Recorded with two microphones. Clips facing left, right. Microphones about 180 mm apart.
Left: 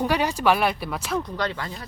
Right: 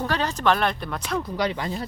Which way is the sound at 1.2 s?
15° right (ahead or behind).